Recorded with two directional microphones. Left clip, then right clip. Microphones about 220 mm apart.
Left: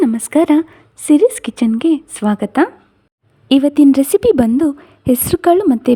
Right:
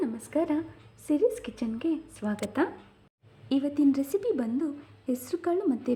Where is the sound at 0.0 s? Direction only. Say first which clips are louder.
Left 16 dB; 50° left (ahead or behind).